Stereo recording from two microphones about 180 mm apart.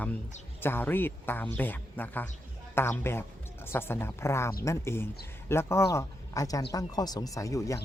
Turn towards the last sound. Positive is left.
turn(degrees=15)  # may be behind; listen again after turning